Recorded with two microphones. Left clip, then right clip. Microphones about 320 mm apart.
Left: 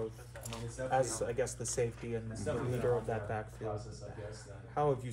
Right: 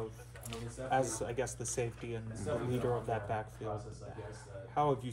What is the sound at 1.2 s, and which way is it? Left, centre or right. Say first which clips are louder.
Speech: left 2 dB; centre.